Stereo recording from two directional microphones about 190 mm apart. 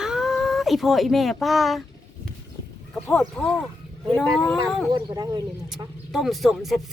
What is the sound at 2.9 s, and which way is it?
Speech, 5° left (ahead or behind).